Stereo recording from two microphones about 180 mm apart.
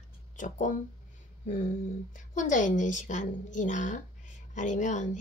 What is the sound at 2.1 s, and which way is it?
A woman's voice, 45° left (ahead or behind).